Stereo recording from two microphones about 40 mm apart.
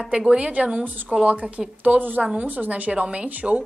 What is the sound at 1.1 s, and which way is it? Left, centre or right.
Speech, centre.